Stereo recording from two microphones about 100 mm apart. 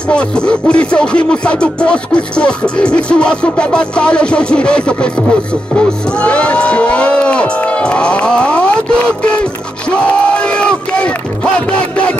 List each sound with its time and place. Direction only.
0.1 s music: 10° left (ahead or behind)
9.8 s crowd: 10° left (ahead or behind)